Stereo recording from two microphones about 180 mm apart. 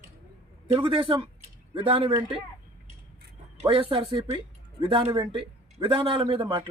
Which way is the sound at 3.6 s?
30° right (ahead or behind).